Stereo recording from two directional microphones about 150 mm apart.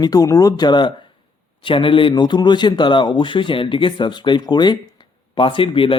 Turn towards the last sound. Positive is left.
turn(degrees=35)  # may be behind; listen again after turning